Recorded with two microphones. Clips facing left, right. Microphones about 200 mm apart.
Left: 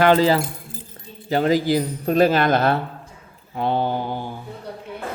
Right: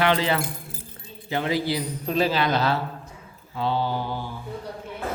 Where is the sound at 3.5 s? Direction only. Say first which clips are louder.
Left 3 dB; 55° left (ahead or behind).